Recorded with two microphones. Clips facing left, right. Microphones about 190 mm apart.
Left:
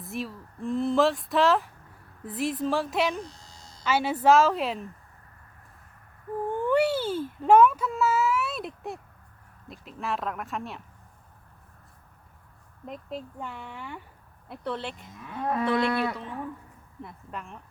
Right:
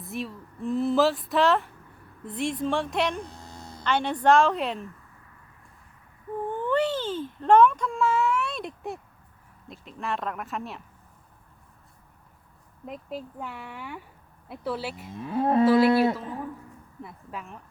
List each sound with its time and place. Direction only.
0.0 s speech: centre (ahead or behind)
3.2 s a sound: 55° right (ahead or behind)
3.8 s speech: 5° left (ahead or behind)
6.5 s speech: 10° left (ahead or behind)
12.8 s speech: centre (ahead or behind)
15.1 s livestock: 30° right (ahead or behind)
15.6 s speech: 5° right (ahead or behind)
17.0 s speech: centre (ahead or behind)